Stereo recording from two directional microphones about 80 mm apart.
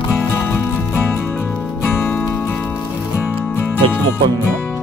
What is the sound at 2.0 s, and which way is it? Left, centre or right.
Music, left.